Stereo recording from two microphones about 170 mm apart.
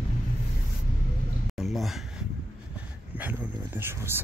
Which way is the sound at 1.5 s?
Centre (ahead or behind).